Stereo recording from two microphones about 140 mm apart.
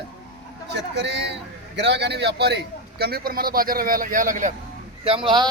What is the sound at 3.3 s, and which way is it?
A man's voice, 90° right.